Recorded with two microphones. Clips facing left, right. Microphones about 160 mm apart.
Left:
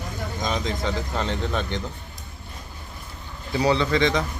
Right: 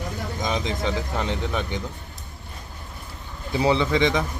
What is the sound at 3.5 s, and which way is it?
Speech, 20° right (ahead or behind).